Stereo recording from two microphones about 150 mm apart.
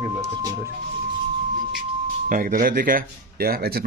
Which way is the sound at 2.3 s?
70° right (ahead or behind).